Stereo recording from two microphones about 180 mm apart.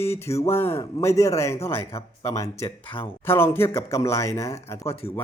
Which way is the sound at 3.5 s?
15° left (ahead or behind).